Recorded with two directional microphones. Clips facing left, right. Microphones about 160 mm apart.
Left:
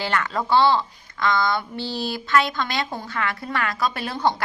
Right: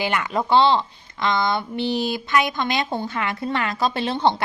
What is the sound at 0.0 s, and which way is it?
A woman's voice, 15° right (ahead or behind).